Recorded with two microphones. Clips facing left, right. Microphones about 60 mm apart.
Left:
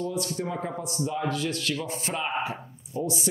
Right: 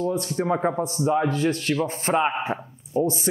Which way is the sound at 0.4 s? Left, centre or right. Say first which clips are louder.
Right 8 dB; right.